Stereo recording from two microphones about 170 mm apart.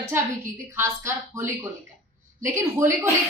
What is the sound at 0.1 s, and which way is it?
A woman's voice, 15° right (ahead or behind).